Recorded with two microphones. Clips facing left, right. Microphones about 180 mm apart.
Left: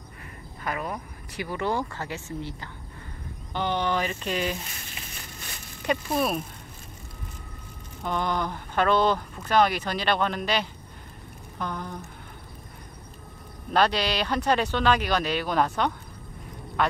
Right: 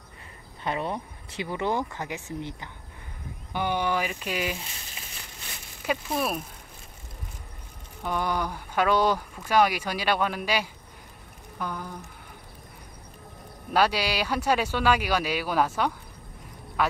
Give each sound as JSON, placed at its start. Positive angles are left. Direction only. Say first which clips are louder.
{"t": 0.7, "sound": "speech", "louder": "right 2 dB", "side_deg": -25}
{"t": 5.8, "sound": "speech", "louder": "left 2 dB", "side_deg": 0}
{"t": 8.0, "sound": "speech", "louder": "left 1 dB", "side_deg": -10}
{"t": 13.7, "sound": "speech", "louder": "left 1 dB", "side_deg": -10}